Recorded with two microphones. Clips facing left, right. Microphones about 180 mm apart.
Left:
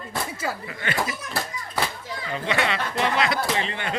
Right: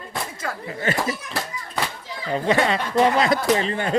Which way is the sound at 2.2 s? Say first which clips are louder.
Right 6 dB; 40° right (ahead or behind).